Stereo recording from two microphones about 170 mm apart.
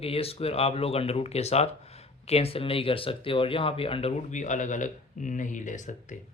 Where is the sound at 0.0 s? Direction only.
35° left (ahead or behind).